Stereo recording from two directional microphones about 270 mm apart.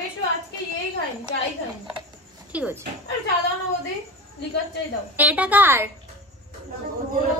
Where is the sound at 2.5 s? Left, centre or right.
Centre.